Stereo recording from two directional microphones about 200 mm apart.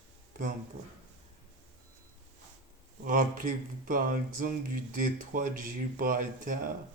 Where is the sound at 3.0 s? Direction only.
40° right (ahead or behind).